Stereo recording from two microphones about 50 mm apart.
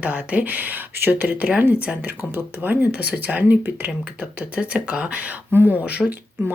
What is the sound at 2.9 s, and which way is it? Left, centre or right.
Speech, right.